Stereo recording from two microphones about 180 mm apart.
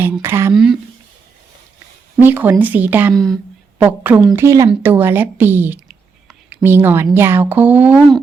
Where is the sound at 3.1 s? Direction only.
Centre (ahead or behind).